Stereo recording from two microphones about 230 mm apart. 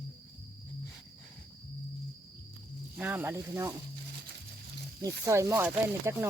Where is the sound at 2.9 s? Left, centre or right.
Centre.